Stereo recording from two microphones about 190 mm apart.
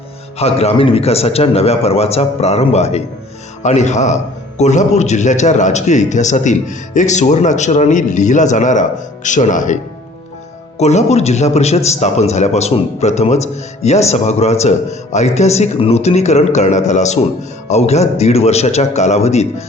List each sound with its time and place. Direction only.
0.3 s a man's voice: 35° left (ahead or behind)
10.8 s a man's voice: 35° left (ahead or behind)